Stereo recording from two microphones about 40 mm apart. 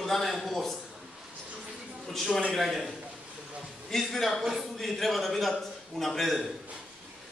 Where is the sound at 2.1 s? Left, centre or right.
Centre.